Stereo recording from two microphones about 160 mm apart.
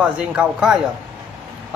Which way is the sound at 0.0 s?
5° right (ahead or behind).